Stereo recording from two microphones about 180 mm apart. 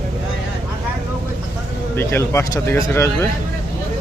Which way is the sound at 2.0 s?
15° left (ahead or behind).